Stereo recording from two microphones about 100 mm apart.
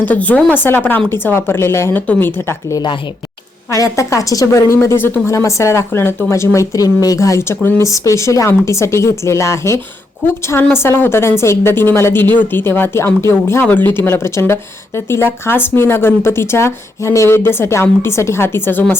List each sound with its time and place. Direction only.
0.0 s a woman's voice: 15° left (ahead or behind)
2.7 s speech: 50° left (ahead or behind)
3.7 s a woman's voice: 30° left (ahead or behind)